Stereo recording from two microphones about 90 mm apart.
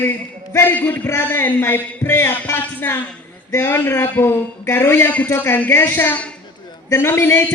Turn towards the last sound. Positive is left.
turn(degrees=25)  # may be behind; listen again after turning